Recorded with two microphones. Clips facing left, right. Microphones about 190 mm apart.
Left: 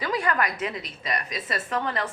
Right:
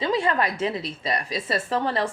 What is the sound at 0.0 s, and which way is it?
A woman's voice, 25° right (ahead or behind).